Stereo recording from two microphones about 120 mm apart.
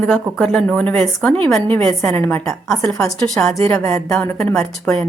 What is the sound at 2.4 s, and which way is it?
Speech, centre (ahead or behind).